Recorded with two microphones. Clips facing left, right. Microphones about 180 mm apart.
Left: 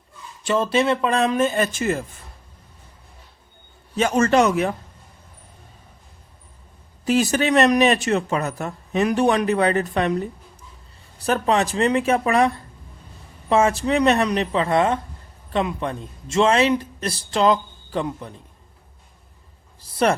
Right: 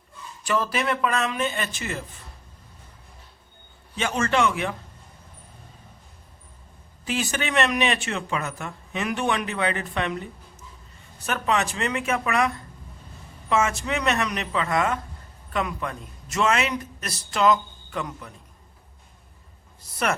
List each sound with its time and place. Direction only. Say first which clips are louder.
0.4 s a man's voice: left 6 dB; 25° left (ahead or behind); by 2.0 s 45° left (ahead or behind)
3.9 s a man's voice: left 7 dB; 40° left (ahead or behind)
7.0 s a man's voice: left 9 dB; 40° left (ahead or behind)
19.8 s speech: left 7 dB; 30° left (ahead or behind)